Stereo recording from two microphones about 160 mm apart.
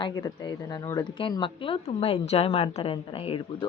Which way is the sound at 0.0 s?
25° left (ahead or behind).